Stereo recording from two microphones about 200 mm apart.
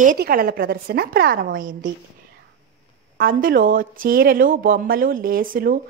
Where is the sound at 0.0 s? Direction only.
45° right (ahead or behind).